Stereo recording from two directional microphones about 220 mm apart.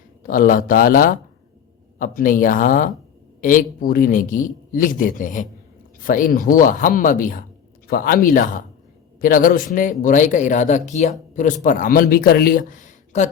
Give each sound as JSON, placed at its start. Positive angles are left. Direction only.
{"t": 0.2, "sound": "a man's voice", "side_deg": 40}